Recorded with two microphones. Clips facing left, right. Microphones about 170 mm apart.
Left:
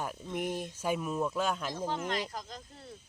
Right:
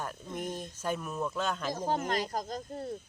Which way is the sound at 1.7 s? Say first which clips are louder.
Right 3 dB; 45° right (ahead or behind).